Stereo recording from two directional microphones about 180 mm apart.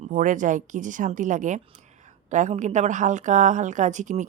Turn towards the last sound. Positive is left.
turn(degrees=-40)  # may be behind; listen again after turning